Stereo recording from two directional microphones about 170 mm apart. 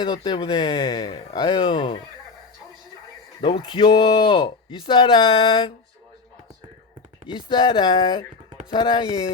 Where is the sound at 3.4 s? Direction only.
30° left (ahead or behind).